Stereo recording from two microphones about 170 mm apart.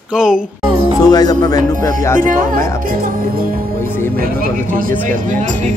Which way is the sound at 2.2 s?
50° right (ahead or behind).